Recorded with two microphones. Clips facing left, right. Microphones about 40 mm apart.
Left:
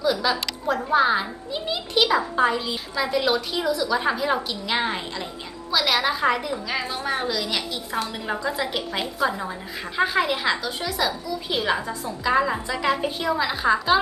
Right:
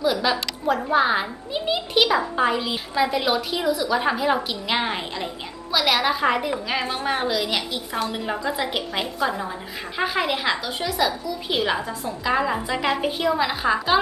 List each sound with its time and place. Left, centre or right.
0.0 s a woman's voice: centre
6.7 s a woman's voice: right
7.3 s a woman's voice: centre